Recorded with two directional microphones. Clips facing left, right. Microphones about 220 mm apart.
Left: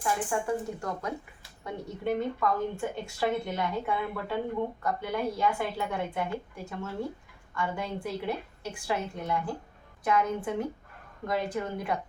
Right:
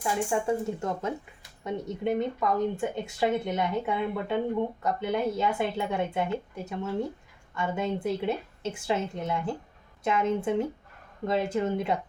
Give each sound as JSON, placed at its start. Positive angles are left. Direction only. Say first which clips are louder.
{"t": 0.0, "sound": "speech", "louder": "right 2 dB", "side_deg": -25}